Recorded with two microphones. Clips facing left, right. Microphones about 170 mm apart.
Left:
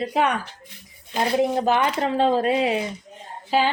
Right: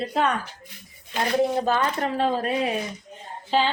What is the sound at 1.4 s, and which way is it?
A woman's voice, 15° left (ahead or behind).